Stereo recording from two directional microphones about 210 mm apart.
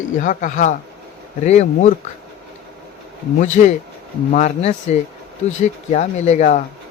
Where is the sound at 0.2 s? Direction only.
35° left (ahead or behind).